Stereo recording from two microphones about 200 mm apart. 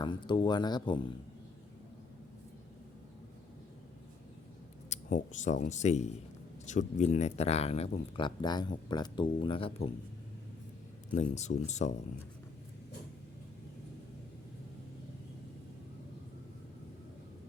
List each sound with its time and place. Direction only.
0.0 s speech: 25° left (ahead or behind)
4.9 s speech: 40° left (ahead or behind)
11.1 s speech: 35° left (ahead or behind)